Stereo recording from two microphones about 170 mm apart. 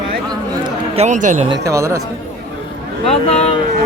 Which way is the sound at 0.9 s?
40° right (ahead or behind).